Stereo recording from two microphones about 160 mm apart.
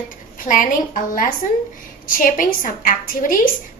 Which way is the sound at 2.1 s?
60° left (ahead or behind).